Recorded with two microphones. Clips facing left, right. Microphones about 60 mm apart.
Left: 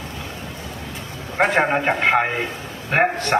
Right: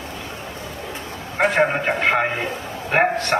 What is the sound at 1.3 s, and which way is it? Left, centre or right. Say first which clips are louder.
Speech: left 1 dB; left.